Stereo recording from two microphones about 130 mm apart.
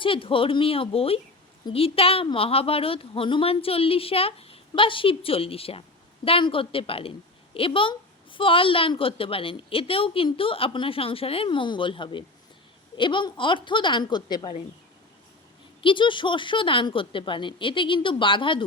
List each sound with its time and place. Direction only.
0.0 s a woman's voice: 45° left (ahead or behind)
15.8 s speech: 40° left (ahead or behind)